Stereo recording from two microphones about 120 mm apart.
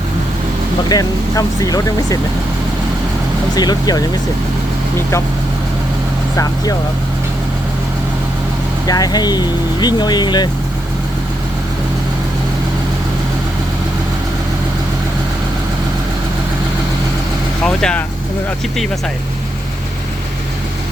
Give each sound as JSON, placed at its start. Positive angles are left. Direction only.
{"t": 0.9, "sound": "speech", "side_deg": 30}
{"t": 3.5, "sound": "speech", "side_deg": 35}
{"t": 6.3, "sound": "speech", "side_deg": 30}
{"t": 8.9, "sound": "speech", "side_deg": 35}
{"t": 17.6, "sound": "speech", "side_deg": 5}